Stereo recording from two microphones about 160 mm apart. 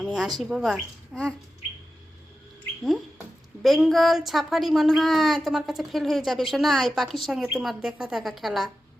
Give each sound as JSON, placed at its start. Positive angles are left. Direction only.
{"t": 0.0, "sound": "a woman's voice", "side_deg": -5}
{"t": 3.6, "sound": "a woman's voice", "side_deg": 0}